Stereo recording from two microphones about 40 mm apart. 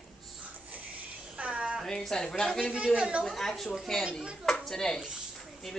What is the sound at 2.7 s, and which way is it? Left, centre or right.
Speech, right.